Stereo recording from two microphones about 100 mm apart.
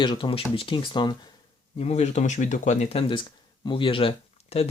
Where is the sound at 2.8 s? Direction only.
80° left.